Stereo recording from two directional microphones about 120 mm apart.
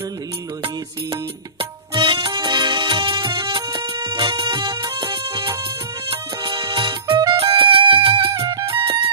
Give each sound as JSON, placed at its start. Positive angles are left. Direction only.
{"t": 1.1, "sound": "music", "side_deg": -45}
{"t": 7.3, "sound": "music", "side_deg": -50}
{"t": 8.4, "sound": "music", "side_deg": -30}
{"t": 8.6, "sound": "music", "side_deg": -45}